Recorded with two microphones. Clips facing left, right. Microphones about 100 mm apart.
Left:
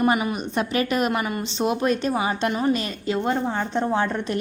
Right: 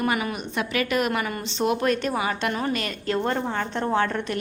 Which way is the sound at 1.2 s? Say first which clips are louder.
Left 1 dB; 15° left (ahead or behind).